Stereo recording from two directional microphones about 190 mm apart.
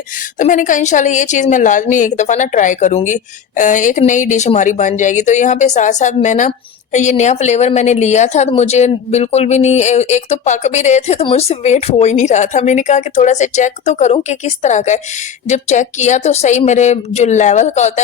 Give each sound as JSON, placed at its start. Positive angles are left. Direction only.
{"t": 0.3, "sound": "a woman's voice", "side_deg": 40}